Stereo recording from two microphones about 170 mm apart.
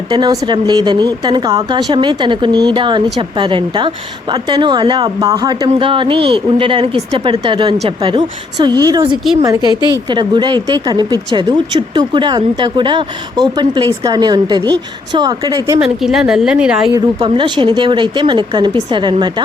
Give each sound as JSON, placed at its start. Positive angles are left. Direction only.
{"t": 0.2, "sound": "speech", "side_deg": -25}
{"t": 15.8, "sound": "speech", "side_deg": 0}
{"t": 16.9, "sound": "speech", "side_deg": -25}